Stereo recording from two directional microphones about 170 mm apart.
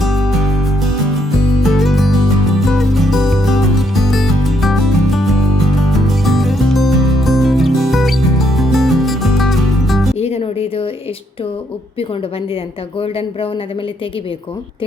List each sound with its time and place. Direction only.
0.0 s music: centre (ahead or behind)
10.2 s music: 35° left (ahead or behind)
13.0 s speech: 35° left (ahead or behind)